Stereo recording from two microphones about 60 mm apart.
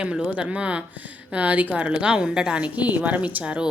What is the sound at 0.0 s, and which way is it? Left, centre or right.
A woman's voice, centre.